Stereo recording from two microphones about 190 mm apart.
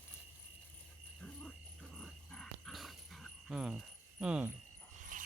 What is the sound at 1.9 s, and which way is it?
Dog, centre (ahead or behind).